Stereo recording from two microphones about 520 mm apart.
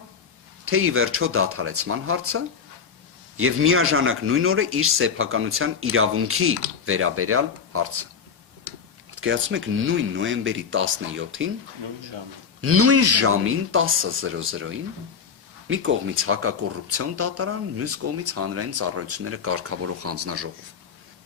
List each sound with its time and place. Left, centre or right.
0.6 s speech: right
9.2 s speech: right
12.6 s speech: right